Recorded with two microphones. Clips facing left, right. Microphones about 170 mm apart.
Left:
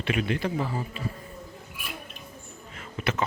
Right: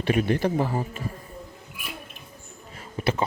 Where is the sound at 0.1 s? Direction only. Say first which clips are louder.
Right 5 dB; 40° right (ahead or behind).